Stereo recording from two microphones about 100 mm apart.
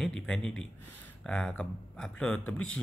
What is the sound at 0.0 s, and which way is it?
Speech, 5° left (ahead or behind).